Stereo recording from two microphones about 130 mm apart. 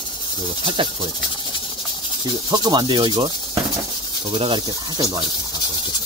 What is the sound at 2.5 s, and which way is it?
Speech, 35° right (ahead or behind).